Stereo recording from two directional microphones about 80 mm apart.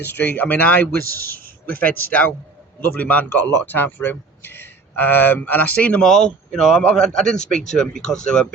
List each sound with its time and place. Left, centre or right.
0.0 s speech: left
6.0 s speech: centre